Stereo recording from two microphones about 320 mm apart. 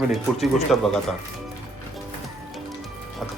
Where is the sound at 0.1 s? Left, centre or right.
Centre.